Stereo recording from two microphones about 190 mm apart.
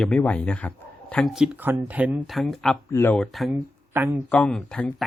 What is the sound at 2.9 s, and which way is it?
Speech, 10° left (ahead or behind).